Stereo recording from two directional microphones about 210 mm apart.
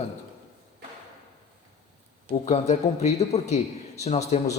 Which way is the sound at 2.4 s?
30° left (ahead or behind).